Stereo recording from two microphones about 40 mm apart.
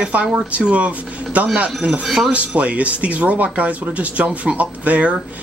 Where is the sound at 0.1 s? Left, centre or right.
Right.